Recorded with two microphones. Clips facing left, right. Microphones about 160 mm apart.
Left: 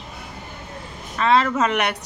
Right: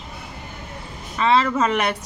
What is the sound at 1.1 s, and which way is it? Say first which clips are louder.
Speech: even; centre (ahead or behind).